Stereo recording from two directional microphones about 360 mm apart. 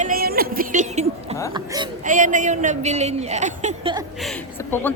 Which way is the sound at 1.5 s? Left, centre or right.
Centre.